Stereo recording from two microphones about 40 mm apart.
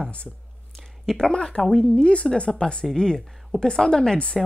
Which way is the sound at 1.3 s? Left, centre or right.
Left.